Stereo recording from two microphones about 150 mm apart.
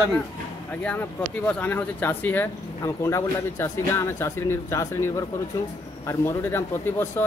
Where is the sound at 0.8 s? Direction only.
10° left (ahead or behind).